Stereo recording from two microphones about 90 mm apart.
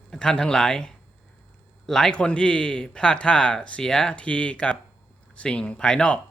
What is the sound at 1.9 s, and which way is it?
Speech, 5° left (ahead or behind).